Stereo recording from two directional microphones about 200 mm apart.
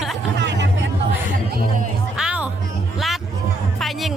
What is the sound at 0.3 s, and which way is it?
Music, 60° right (ahead or behind).